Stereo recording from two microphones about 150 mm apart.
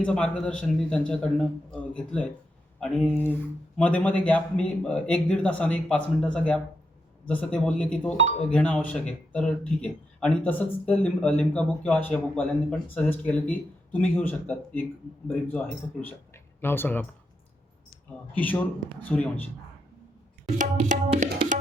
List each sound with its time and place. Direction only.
0.0 s speech: 5° left (ahead or behind)
18.3 s speech: 10° left (ahead or behind)
20.6 s tabla: 60° right (ahead or behind)